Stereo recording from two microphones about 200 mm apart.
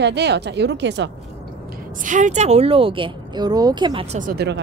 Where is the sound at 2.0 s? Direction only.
40° right (ahead or behind); by 4.0 s 20° right (ahead or behind).